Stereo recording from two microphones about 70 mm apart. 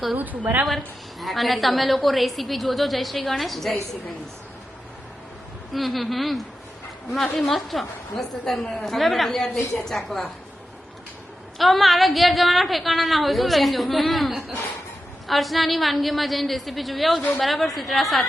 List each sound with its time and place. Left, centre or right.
0.2 s a woman's voice: right
1.2 s a woman's voice: centre
5.7 s a woman's voice: centre
11.5 s a woman's voice: centre